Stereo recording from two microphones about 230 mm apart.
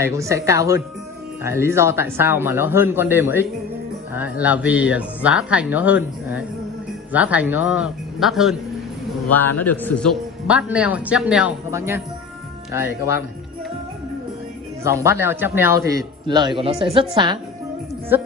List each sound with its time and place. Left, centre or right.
0.0 s a man's voice: centre
14.8 s a man's voice: centre